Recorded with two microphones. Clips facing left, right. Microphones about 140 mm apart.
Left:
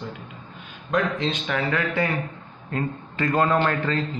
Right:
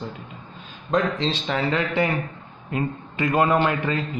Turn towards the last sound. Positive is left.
turn(degrees=-15)  # may be behind; listen again after turning